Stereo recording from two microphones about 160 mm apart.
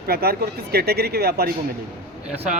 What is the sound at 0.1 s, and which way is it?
Speech, 75° right (ahead or behind).